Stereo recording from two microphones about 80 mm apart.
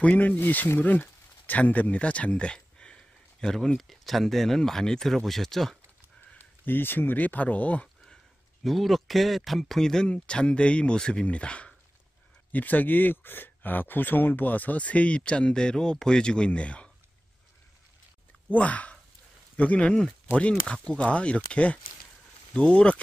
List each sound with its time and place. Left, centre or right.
0.0 s speech: centre
6.3 s speech: left
8.6 s speech: centre
18.5 s speech: centre